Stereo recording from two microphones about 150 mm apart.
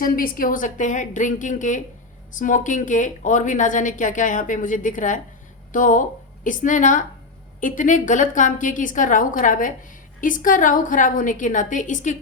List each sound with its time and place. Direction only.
0.0 s a woman's voice: 70° left (ahead or behind)